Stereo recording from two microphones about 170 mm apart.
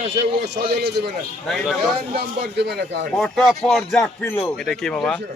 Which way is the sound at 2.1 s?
75° right (ahead or behind).